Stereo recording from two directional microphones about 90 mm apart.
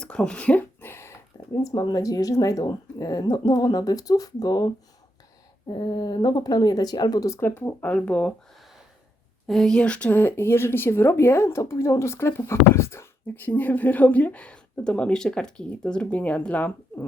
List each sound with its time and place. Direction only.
0.0 s a sound: 10° left (ahead or behind); by 1.1 s 25° left (ahead or behind)
1.5 s speech: 45° left (ahead or behind)
7.3 s speech: 25° left (ahead or behind)
9.5 s speech: 5° left (ahead or behind)